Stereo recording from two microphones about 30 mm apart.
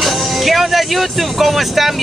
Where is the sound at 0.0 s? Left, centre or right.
Centre.